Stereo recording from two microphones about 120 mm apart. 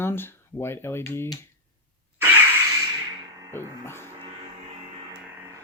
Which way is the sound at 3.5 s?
20° left (ahead or behind).